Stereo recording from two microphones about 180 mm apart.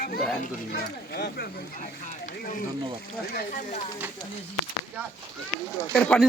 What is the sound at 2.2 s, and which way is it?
Speech, 45° left (ahead or behind).